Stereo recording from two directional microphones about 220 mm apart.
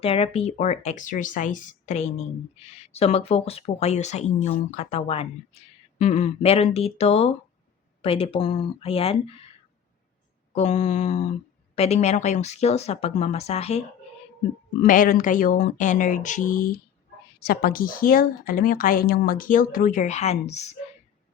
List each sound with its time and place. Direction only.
0.0 s speech: 25° left (ahead or behind)
10.5 s speech: 30° left (ahead or behind)